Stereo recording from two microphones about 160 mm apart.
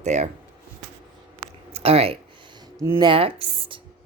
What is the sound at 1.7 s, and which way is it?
Speech, 40° right (ahead or behind).